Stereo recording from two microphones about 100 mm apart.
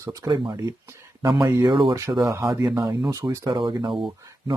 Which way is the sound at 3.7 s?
45° right (ahead or behind).